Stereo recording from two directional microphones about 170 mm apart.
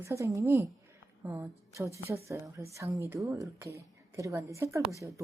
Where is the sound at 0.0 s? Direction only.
15° right (ahead or behind).